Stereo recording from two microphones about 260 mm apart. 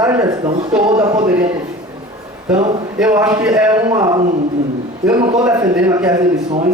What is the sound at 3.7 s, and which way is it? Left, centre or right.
Speech, centre.